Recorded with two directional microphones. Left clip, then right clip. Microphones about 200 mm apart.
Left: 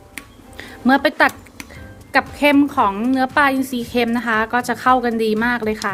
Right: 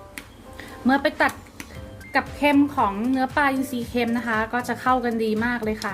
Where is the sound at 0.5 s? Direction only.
35° left (ahead or behind).